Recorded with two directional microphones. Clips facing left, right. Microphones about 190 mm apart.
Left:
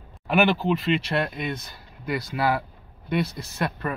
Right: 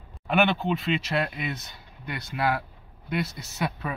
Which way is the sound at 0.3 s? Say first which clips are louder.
Left 3 dB; centre (ahead or behind).